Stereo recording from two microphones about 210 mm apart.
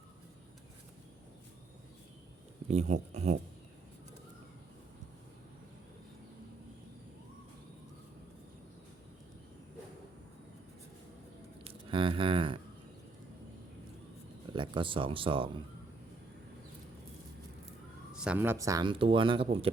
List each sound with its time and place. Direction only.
2.6 s speech: 35° right (ahead or behind)
11.6 s a sound: 25° right (ahead or behind)
14.5 s speech: 25° right (ahead or behind)
18.2 s speech: 5° right (ahead or behind); by 19.7 s 25° right (ahead or behind)